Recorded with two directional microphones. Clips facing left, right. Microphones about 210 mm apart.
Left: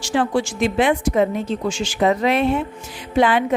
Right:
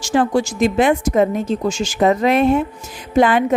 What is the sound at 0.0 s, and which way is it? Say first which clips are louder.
Speech: right 3 dB; 45° right (ahead or behind).